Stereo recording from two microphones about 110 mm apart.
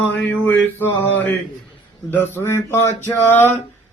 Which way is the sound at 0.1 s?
15° left (ahead or behind).